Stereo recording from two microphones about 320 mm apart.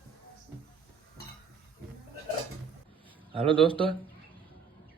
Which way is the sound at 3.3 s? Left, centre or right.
Centre.